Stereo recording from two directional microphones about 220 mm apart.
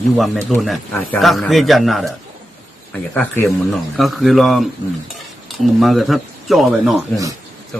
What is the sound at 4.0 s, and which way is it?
A man's voice, centre (ahead or behind).